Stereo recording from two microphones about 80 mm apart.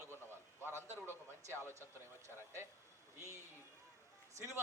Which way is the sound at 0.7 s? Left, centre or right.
Right.